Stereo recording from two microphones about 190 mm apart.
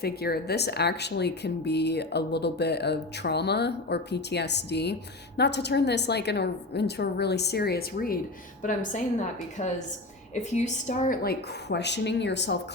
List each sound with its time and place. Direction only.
0.0 s a woman's voice: 55° left (ahead or behind)